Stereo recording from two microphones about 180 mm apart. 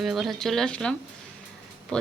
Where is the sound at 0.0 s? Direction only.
Centre (ahead or behind).